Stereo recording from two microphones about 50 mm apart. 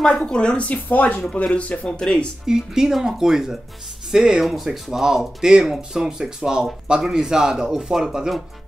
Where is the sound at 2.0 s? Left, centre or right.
Centre.